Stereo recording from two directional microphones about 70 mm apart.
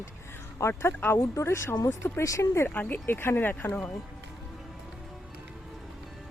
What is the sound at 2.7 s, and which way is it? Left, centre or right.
Speech, left.